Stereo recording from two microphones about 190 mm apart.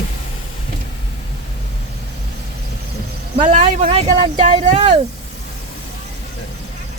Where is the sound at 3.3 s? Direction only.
40° right (ahead or behind).